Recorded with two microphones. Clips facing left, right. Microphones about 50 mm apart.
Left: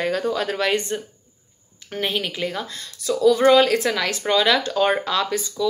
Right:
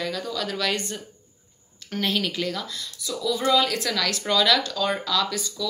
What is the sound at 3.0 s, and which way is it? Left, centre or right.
Speech, left.